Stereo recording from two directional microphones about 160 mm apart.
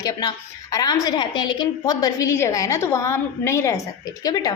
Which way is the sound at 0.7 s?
20° left (ahead or behind).